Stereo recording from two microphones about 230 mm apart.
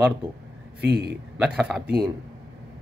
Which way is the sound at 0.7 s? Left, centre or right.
Right.